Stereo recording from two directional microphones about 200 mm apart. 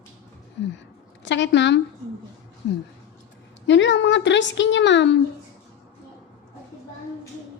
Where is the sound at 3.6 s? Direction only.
65° left (ahead or behind).